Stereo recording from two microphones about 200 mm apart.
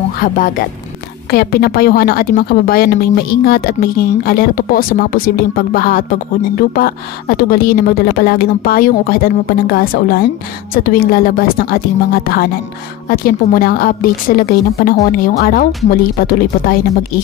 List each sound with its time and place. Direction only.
0.2 s a woman's voice: 45° left (ahead or behind)